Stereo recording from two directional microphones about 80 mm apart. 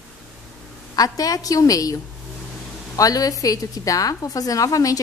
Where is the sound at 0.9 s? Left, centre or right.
Left.